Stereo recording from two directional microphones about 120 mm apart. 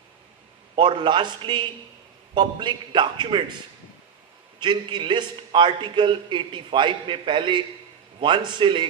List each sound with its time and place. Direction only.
0.8 s a man's voice: 40° right (ahead or behind)
4.6 s a man's voice: 40° right (ahead or behind)